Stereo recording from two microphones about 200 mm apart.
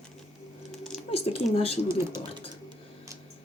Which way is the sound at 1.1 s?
30° left (ahead or behind).